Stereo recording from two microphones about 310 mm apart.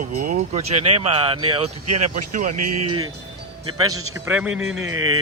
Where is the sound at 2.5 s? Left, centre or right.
Right.